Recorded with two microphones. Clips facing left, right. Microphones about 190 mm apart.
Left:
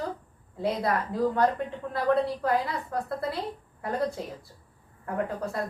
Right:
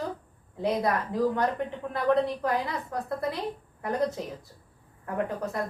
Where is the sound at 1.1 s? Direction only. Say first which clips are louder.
Left 4 dB; 20° right (ahead or behind).